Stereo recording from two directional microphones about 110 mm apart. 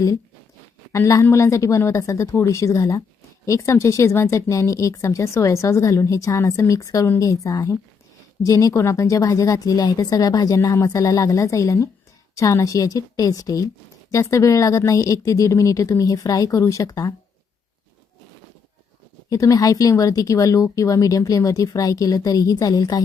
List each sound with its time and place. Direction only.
0.9 s speech: 25° left (ahead or behind)
19.3 s speech: 30° left (ahead or behind)